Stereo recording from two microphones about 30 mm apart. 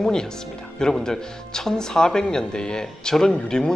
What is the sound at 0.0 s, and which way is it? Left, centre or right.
Speech, left.